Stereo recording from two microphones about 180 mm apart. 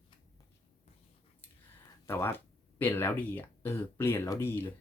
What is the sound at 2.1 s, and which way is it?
Speech, 15° left (ahead or behind).